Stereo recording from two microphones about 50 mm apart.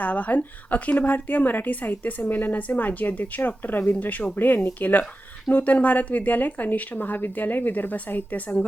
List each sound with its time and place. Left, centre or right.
0.0 s speech: left